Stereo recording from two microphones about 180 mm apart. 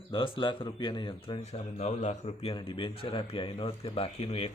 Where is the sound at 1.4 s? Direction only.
35° left (ahead or behind).